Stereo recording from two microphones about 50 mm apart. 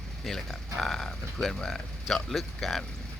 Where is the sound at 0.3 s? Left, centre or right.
Centre.